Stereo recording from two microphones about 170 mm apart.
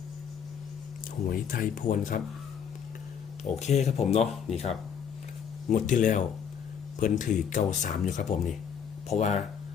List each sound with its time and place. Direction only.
1.3 s speech: 55° left (ahead or behind)
3.4 s speech: 40° left (ahead or behind)
5.6 s speech: 45° left (ahead or behind)